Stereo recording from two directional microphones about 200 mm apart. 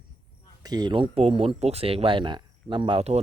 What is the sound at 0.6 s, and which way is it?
Speech, 20° right (ahead or behind).